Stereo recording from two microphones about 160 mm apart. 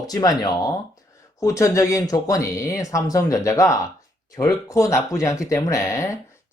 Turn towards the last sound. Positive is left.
turn(degrees=20)  # may be behind; listen again after turning